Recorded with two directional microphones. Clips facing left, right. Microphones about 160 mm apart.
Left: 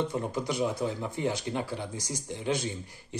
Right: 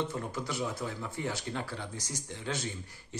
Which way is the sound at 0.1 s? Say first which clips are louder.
Left 5 dB; 15° left (ahead or behind).